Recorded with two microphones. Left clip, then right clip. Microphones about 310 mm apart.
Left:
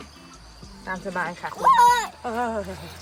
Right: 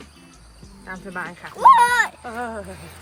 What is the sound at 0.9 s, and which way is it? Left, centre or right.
Speech, centre.